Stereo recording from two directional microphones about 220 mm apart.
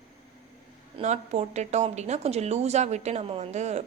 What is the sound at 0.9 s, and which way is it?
Speech, 30° right (ahead or behind).